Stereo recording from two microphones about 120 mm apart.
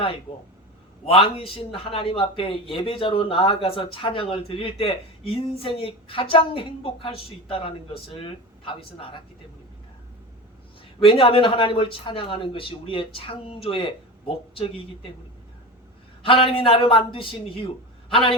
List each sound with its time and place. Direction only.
1.0 s a man's voice: 50° left (ahead or behind)
11.0 s a man's voice: 50° left (ahead or behind)
16.2 s a man's voice: 50° left (ahead or behind)